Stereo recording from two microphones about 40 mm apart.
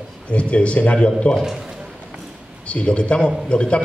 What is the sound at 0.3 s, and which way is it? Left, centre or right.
A man's voice, left.